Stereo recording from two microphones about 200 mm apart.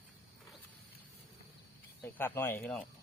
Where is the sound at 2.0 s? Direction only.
10° left (ahead or behind).